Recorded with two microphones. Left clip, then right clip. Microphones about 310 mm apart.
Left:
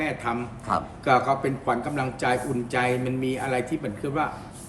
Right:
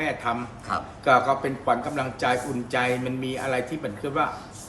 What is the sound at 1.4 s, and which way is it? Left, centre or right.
A man's voice, centre.